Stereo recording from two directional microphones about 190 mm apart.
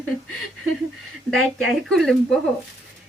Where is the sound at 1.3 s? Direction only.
Centre (ahead or behind).